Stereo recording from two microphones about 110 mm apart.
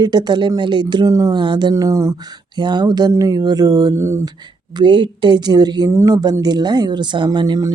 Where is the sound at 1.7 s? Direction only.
30° right (ahead or behind).